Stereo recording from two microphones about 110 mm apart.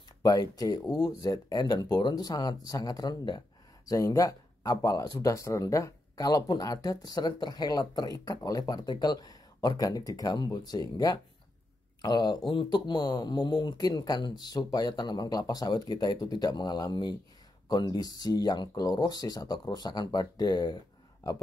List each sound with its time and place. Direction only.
0.2 s speech: 35° left (ahead or behind)
3.9 s speech: 30° left (ahead or behind)